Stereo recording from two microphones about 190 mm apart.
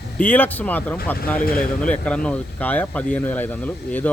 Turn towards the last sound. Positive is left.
turn(degrees=10)  # may be behind; listen again after turning